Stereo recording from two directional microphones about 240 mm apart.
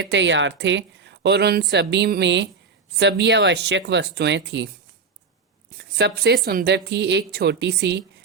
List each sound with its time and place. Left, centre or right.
0.1 s a woman's voice: right
5.7 s a woman's voice: right